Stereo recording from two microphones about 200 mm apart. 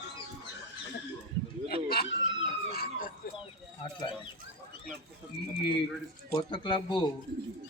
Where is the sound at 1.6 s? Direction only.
50° left (ahead or behind).